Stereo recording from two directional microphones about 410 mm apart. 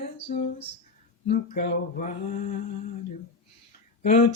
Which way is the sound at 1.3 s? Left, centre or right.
Left.